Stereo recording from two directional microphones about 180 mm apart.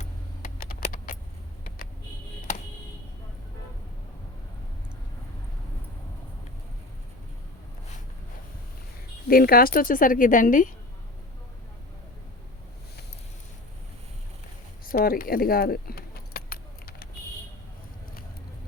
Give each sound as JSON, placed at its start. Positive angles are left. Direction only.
{"t": 0.0, "sound": "keys jangling", "side_deg": 50}
{"t": 9.2, "sound": "a woman's voice", "side_deg": 55}
{"t": 14.8, "sound": "keys jangling", "side_deg": 55}